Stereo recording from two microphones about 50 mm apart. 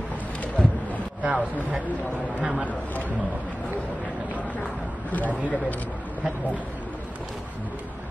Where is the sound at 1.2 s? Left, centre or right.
Right.